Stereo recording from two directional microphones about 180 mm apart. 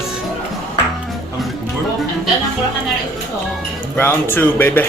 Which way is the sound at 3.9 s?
10° left (ahead or behind).